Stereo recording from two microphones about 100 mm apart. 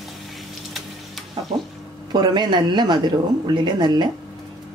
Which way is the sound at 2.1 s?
45° right (ahead or behind).